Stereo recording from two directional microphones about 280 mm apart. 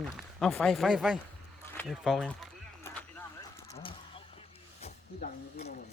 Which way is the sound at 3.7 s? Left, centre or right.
Centre.